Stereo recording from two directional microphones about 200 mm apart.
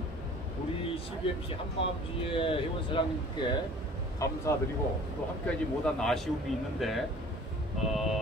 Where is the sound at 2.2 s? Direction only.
25° left (ahead or behind).